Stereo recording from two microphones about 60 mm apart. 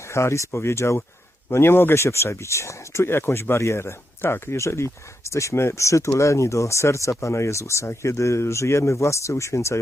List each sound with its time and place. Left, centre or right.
0.1 s speech: left